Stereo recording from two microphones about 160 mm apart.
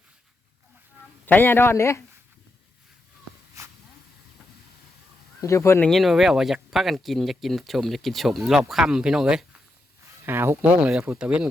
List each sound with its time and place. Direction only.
1.2 s a man's voice: 10° left (ahead or behind)
5.4 s speech: 20° left (ahead or behind)
5.8 s speech: centre (ahead or behind)